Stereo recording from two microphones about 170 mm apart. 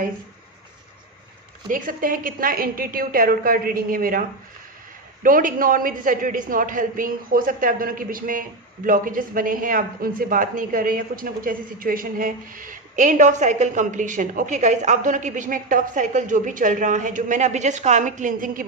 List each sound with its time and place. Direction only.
1.7 s a woman's voice: 55° right (ahead or behind)